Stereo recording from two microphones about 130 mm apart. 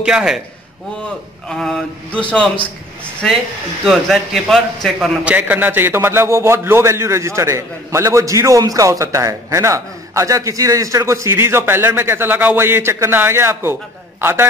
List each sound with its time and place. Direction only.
0.0 s a man's voice: 5° right (ahead or behind)
1.5 s a sound: 5° left (ahead or behind)
3.8 s a man's voice: centre (ahead or behind)
5.2 s a man's voice: 10° right (ahead or behind)